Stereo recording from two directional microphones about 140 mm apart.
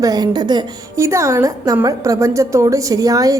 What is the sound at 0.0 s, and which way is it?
A woman's voice, 25° right (ahead or behind).